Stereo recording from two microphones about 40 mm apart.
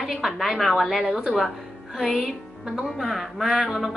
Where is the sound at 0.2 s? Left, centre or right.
Centre.